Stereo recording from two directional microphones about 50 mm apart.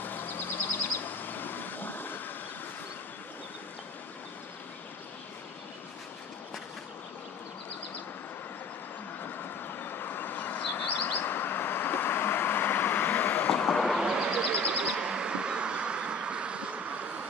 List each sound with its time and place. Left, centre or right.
0.0 s vehicle: left
9.2 s vehicle: left
14.0 s a sound: centre